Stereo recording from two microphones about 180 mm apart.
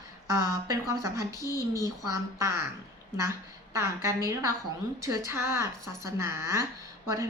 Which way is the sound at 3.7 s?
15° right (ahead or behind).